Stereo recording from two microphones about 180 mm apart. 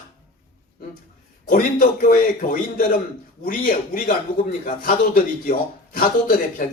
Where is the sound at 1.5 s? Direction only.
50° left (ahead or behind).